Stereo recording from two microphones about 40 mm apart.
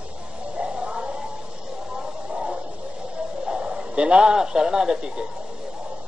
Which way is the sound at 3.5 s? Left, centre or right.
Right.